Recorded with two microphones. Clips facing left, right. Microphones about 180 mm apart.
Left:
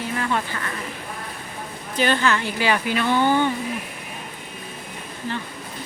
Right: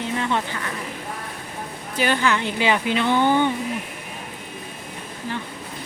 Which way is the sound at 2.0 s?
15° right (ahead or behind).